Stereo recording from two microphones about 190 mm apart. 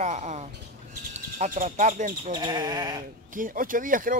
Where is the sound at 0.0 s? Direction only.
35° right (ahead or behind).